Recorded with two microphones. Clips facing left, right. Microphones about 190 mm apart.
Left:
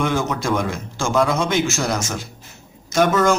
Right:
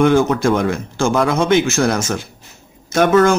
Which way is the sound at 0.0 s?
55° right (ahead or behind).